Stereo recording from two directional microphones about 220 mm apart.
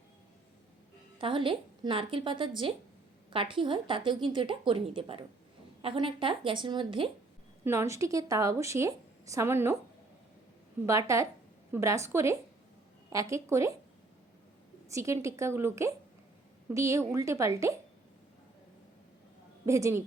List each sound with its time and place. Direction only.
1.2 s a woman's voice: 25° right (ahead or behind)
7.6 s speech: 10° right (ahead or behind)
10.8 s speech: 15° right (ahead or behind)
14.8 s speech: 15° right (ahead or behind)
19.6 s speech: 15° right (ahead or behind)